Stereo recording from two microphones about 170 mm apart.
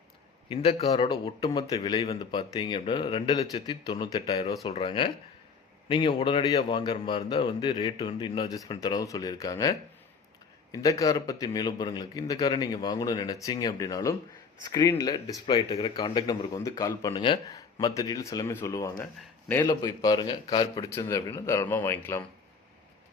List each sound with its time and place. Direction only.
0.4 s a man's voice: 35° left (ahead or behind)
0.9 s speech: 25° left (ahead or behind)